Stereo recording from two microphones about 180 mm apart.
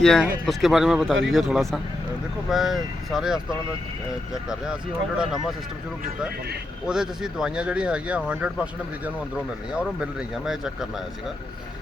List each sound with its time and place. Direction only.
0.0 s speech: 5° left (ahead or behind)
4.4 s speech: 5° right (ahead or behind)
6.8 s speech: 5° right (ahead or behind)
9.8 s speech: 5° right (ahead or behind)